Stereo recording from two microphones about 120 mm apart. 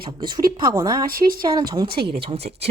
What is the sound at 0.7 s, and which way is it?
Speech, 35° right (ahead or behind).